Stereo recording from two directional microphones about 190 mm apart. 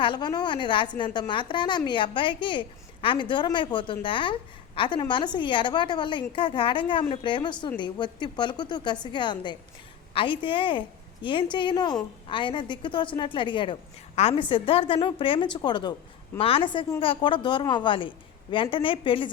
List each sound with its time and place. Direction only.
0.0 s a woman's voice: 25° left (ahead or behind)